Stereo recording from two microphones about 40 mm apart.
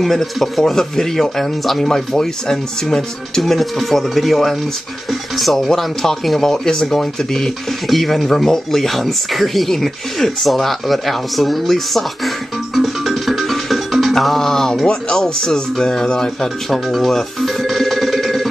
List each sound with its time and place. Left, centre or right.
0.0 s speech: centre
12.7 s music: centre
14.1 s speech: centre
16.7 s music: centre